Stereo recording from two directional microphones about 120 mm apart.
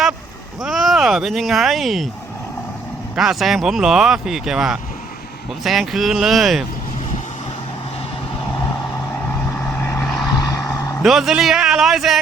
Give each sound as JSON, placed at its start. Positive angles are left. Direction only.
{"t": 0.6, "sound": "speech", "side_deg": 0}
{"t": 3.2, "sound": "speech", "side_deg": 0}
{"t": 9.6, "sound": "vehicle", "side_deg": 5}
{"t": 10.4, "sound": "vehicle", "side_deg": 25}
{"t": 11.0, "sound": "speech", "side_deg": 0}